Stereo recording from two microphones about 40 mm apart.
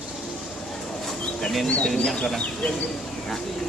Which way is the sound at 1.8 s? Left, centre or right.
Centre.